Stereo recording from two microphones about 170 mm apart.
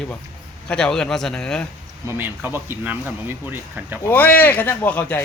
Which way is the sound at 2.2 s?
10° right (ahead or behind).